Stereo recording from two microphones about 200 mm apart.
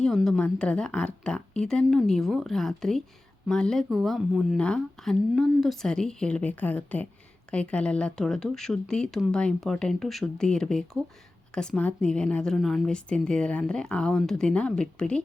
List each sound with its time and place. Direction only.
0.0 s speech: centre (ahead or behind)